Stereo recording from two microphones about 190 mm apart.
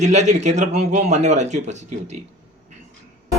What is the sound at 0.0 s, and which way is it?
A man's voice, 35° right (ahead or behind).